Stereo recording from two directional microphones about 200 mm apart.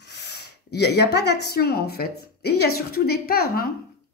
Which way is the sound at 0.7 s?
55° left (ahead or behind).